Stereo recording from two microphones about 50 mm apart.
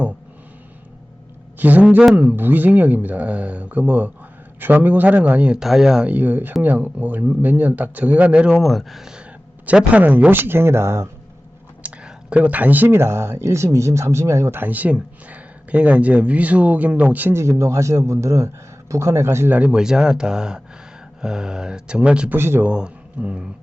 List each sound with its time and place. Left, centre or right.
1.5 s speech: right
2.3 s speech: right
5.5 s speech: centre
6.1 s speech: right
8.6 s speech: centre
9.7 s speech: right
12.0 s speech: right
12.9 s speech: right
14.5 s speech: right
17.3 s speech: right
19.5 s speech: right
19.7 s speech: centre
22.4 s speech: right
22.6 s speech: right